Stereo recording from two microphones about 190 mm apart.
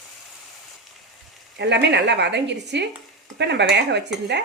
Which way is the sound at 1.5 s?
65° right (ahead or behind).